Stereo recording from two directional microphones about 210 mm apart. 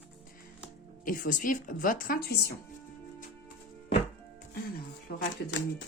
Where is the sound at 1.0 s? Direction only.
40° left (ahead or behind).